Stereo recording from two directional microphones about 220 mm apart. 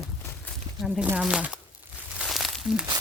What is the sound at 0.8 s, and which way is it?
Speech, 5° right (ahead or behind).